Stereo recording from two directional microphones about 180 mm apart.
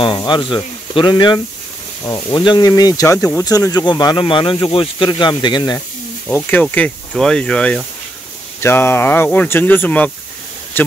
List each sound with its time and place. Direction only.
0.0 s speech: 25° left (ahead or behind)
6.2 s speech: 10° left (ahead or behind)